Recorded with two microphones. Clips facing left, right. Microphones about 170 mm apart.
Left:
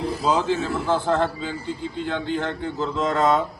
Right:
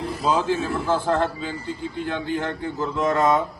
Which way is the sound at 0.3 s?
10° right (ahead or behind).